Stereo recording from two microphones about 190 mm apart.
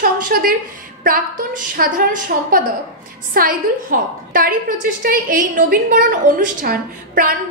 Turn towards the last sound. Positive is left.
turn(degrees=-50)  # may be behind; listen again after turning